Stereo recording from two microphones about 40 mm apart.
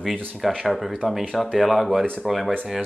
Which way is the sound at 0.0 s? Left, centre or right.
Centre.